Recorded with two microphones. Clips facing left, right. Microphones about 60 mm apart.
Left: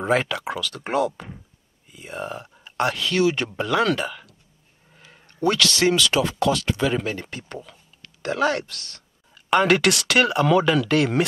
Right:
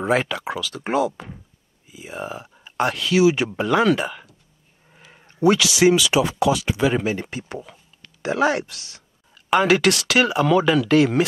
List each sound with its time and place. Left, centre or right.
0.0 s speech: centre